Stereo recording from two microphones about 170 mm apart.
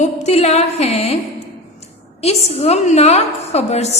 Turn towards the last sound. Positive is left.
turn(degrees=40)  # may be behind; listen again after turning